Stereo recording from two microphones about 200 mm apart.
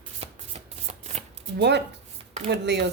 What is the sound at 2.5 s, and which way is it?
Speech, 60° right (ahead or behind).